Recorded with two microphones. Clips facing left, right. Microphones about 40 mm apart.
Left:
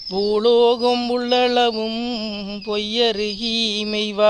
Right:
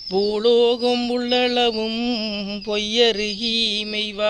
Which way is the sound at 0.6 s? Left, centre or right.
Right.